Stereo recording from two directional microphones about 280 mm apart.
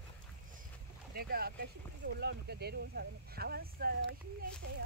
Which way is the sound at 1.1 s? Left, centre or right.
Right.